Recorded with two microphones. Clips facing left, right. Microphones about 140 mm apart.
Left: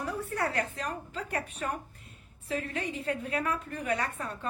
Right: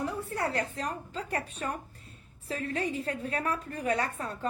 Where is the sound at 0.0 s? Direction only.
30° right (ahead or behind).